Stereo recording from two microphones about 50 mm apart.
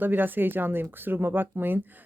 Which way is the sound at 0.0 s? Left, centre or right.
Right.